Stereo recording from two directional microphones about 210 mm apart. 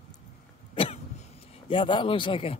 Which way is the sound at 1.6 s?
25° left (ahead or behind).